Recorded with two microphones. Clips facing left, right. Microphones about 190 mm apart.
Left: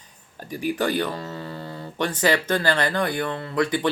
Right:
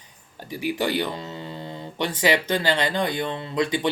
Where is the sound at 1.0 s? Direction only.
20° right (ahead or behind).